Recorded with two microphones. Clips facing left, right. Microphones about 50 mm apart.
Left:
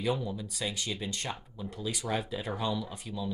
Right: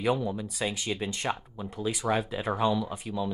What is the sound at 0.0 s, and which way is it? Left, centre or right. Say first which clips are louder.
Speech: right 4 dB; right.